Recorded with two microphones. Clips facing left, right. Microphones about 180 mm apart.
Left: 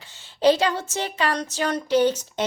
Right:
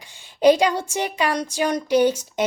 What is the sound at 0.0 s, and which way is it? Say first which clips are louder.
A woman's voice: right 3 dB; 15° right (ahead or behind).